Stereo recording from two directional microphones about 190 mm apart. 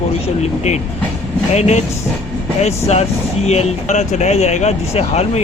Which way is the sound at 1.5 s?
35° left (ahead or behind).